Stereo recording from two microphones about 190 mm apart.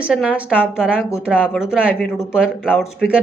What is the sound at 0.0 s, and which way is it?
Speech, 5° right (ahead or behind).